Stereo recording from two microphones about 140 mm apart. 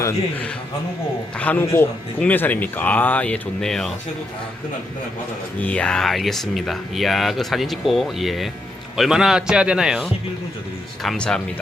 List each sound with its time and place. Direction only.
0.0 s speech: 10° left (ahead or behind)
5.5 s speech: 10° left (ahead or behind)